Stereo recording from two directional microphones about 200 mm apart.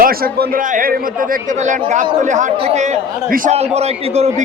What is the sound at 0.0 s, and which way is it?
Speech, 45° right (ahead or behind).